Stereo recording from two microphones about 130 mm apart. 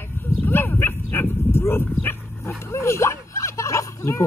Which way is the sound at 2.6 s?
20° left (ahead or behind).